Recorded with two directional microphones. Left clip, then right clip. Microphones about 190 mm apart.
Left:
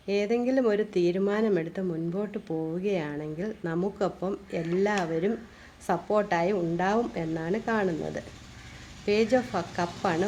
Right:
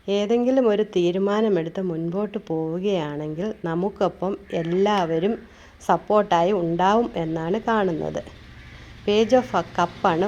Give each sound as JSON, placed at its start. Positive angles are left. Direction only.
{"t": 0.1, "sound": "speech", "side_deg": -25}
{"t": 0.9, "sound": "a woman's voice", "side_deg": 10}
{"t": 1.1, "sound": "speech", "side_deg": -20}
{"t": 9.0, "sound": "a woman's voice", "side_deg": 10}
{"t": 9.3, "sound": "speech", "side_deg": -25}